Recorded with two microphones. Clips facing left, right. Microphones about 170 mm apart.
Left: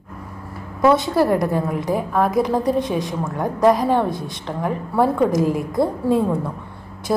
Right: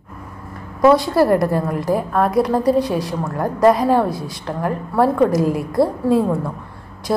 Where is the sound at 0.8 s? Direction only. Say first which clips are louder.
Right 3 dB; centre (ahead or behind).